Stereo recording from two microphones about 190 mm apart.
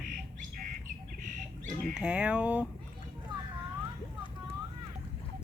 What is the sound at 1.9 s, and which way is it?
Speech, 5° right (ahead or behind).